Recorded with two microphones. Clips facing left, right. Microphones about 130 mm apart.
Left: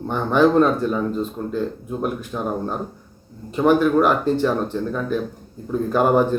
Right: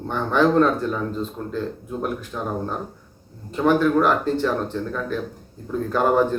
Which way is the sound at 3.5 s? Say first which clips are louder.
Left 2 dB; 15° left (ahead or behind).